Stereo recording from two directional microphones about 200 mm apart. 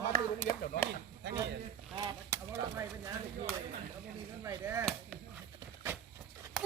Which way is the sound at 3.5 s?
5° left (ahead or behind).